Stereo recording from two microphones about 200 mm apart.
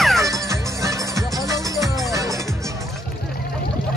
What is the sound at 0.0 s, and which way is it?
Music, centre (ahead or behind).